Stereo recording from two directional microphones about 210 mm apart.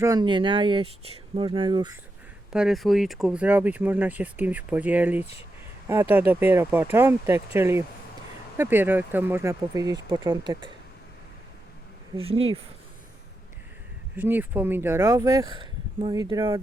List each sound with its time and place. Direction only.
0.0 s speech: 20° right (ahead or behind)
2.5 s speech: 5° right (ahead or behind); by 10.7 s 20° right (ahead or behind)
12.1 s speech: 25° right (ahead or behind)
14.2 s speech: 10° right (ahead or behind)